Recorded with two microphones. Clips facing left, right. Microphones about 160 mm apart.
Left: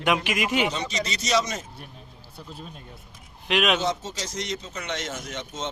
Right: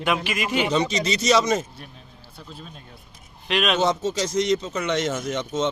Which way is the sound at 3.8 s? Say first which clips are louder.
Right 6 dB; 60° right (ahead or behind).